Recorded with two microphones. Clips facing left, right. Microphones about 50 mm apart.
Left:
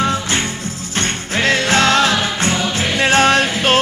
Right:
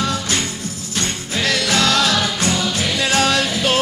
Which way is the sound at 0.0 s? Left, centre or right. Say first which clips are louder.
Left 3 dB; left.